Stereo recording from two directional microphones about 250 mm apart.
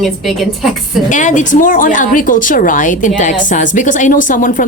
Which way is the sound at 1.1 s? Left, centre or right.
Left.